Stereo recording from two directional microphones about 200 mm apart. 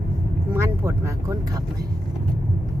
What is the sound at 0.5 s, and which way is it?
Speech, 15° right (ahead or behind).